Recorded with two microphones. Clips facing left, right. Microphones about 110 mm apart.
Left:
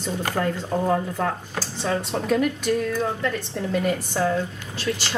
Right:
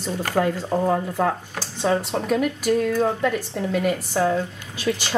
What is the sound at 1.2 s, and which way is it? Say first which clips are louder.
Speech: right 3 dB; 15° right (ahead or behind).